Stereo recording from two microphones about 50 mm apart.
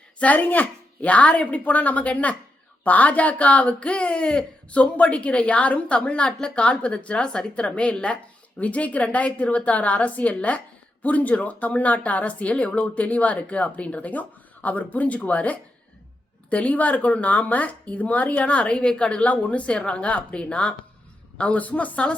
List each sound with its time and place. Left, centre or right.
0.2 s a woman's voice: left